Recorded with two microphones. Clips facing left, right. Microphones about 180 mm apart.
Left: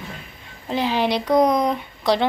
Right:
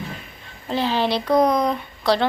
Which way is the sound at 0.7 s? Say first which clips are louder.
Even; 15° left (ahead or behind).